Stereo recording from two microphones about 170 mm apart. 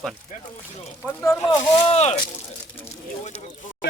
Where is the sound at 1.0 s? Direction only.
15° left (ahead or behind).